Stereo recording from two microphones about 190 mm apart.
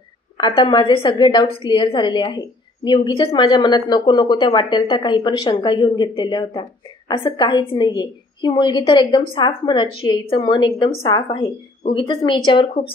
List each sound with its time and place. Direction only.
0.4 s a woman's voice: 25° left (ahead or behind)